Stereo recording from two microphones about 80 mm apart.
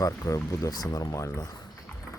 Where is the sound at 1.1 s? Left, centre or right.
Left.